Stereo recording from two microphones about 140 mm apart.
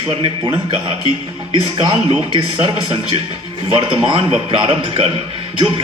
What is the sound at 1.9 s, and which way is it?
A man's voice, 40° right (ahead or behind).